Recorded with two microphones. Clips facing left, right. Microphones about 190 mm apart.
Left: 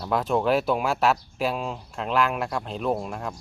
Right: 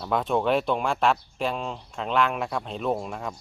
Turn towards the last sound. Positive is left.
turn(degrees=0)  # may be behind; listen again after turning